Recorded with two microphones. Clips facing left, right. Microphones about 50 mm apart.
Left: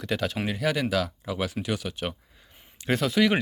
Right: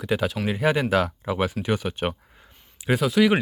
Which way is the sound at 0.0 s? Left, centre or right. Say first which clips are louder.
Right 4 dB; centre.